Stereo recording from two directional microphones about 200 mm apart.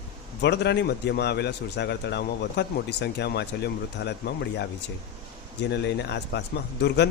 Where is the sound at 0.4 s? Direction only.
55° left (ahead or behind).